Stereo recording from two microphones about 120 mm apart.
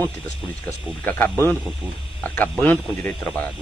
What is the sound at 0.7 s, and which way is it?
Speech, 15° left (ahead or behind).